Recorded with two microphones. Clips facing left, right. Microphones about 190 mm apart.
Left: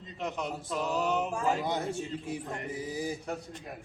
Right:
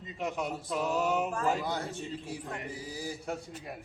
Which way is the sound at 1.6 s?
20° left (ahead or behind).